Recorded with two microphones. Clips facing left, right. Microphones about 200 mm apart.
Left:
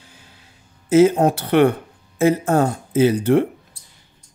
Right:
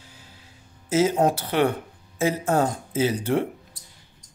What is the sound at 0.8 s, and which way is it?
Speech, 60° left (ahead or behind).